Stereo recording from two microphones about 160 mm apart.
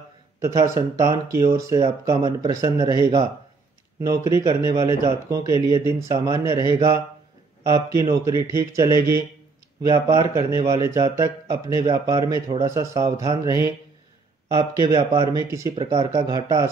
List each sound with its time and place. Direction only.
0.4 s speech: 20° right (ahead or behind)
15.8 s speech: 40° right (ahead or behind)
16.3 s speech: 20° right (ahead or behind)